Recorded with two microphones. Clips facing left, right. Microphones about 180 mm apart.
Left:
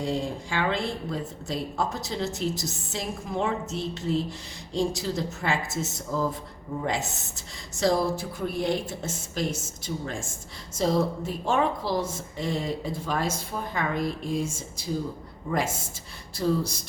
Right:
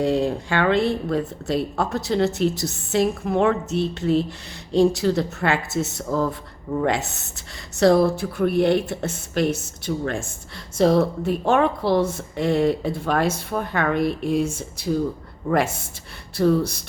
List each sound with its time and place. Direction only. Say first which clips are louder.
0.0 s speech: right 8 dB; 65° right (ahead or behind)